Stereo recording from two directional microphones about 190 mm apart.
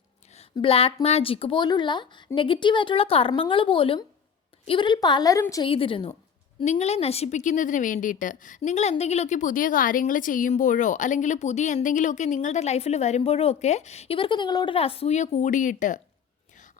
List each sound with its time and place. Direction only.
0.3 s a woman's voice: 30° left (ahead or behind)
5.6 s a woman's voice: 30° left (ahead or behind)